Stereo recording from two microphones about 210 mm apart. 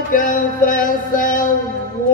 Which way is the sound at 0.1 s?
40° left (ahead or behind).